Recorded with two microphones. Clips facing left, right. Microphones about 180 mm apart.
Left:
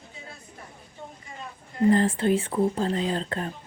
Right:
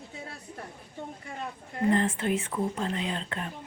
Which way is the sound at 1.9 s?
35° left (ahead or behind).